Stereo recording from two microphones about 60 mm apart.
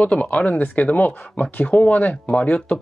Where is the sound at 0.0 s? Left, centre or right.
Left.